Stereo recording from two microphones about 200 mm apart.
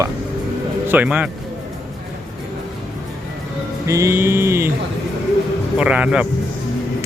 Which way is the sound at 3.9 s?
15° right (ahead or behind).